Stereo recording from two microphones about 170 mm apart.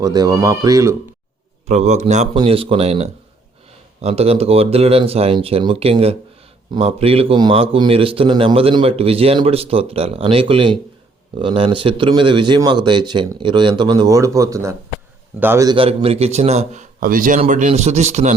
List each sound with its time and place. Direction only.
0.0 s speech: 25° right (ahead or behind)
1.6 s a man's voice: 40° right (ahead or behind)
2.3 s a man's voice: 30° right (ahead or behind); by 15.7 s 15° right (ahead or behind)
15.7 s a man's voice: 30° right (ahead or behind)